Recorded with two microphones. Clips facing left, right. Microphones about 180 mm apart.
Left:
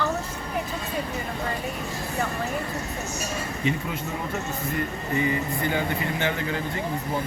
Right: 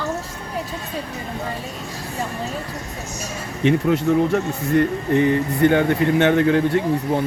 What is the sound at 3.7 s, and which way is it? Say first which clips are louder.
Speech: right 13 dB; 75° right (ahead or behind).